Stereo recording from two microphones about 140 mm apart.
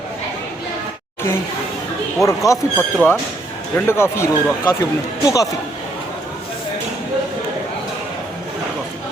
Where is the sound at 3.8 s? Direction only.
20° left (ahead or behind).